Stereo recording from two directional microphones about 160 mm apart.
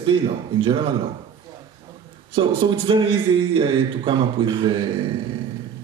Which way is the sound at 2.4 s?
30° right (ahead or behind).